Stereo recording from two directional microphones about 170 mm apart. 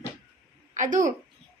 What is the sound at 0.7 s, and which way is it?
Speech, 50° right (ahead or behind).